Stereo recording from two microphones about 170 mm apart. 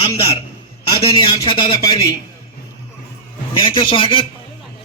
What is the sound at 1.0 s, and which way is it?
Speech, 30° left (ahead or behind).